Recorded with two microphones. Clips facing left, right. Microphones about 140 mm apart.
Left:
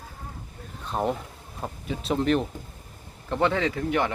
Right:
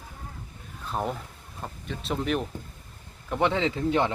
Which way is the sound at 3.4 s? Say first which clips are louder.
Even; 20° right (ahead or behind).